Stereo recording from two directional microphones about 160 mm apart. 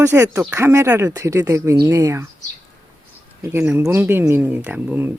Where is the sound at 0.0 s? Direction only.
20° right (ahead or behind).